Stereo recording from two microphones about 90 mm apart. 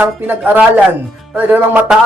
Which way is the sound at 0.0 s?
20° right (ahead or behind).